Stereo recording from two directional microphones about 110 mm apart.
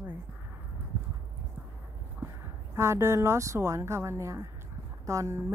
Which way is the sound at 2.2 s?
25° right (ahead or behind).